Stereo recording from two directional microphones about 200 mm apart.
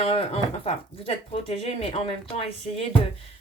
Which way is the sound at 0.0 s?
30° left (ahead or behind).